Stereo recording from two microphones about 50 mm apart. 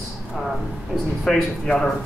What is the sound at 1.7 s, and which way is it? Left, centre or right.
Speech, centre.